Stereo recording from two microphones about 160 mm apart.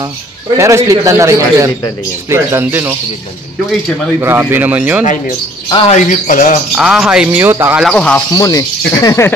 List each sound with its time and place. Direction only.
0.6 s a man's voice: 20° right (ahead or behind)
4.2 s speech: 15° right (ahead or behind)
5.7 s speech: 30° left (ahead or behind)
5.9 s speech: 55° left (ahead or behind)
6.7 s speech: 5° right (ahead or behind)
7.8 s speech: 5° left (ahead or behind)
8.4 s speech: 20° left (ahead or behind)